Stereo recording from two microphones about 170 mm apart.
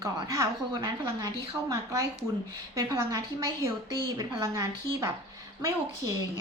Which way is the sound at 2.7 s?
20° right (ahead or behind).